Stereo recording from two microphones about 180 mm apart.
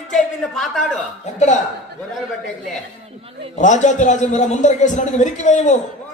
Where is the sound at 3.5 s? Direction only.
40° left (ahead or behind).